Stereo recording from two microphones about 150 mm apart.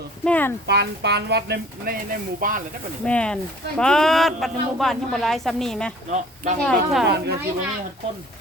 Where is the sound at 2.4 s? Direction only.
65° right (ahead or behind).